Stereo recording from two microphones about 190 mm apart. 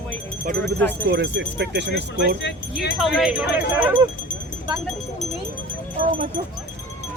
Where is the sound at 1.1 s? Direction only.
65° right (ahead or behind).